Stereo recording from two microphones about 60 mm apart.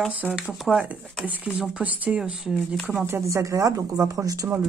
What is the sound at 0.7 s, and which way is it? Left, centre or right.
Speech, right.